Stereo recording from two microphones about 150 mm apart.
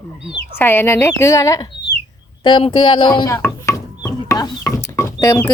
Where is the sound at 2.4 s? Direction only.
35° left (ahead or behind).